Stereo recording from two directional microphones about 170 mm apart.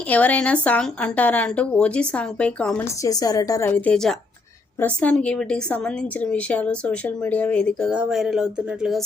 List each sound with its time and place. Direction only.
0.1 s a woman's voice: 10° left (ahead or behind)
3.0 s a woman's voice: 20° left (ahead or behind); by 9.0 s centre (ahead or behind)